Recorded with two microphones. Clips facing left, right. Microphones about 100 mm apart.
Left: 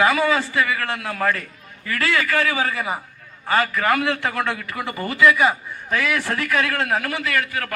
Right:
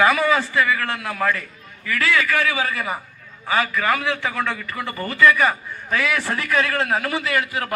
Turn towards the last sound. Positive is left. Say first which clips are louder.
# right 1 dB
turn(degrees=-20)  # may be behind; listen again after turning